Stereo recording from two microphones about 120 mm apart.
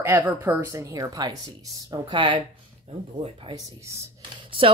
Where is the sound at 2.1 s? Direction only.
45° right (ahead or behind).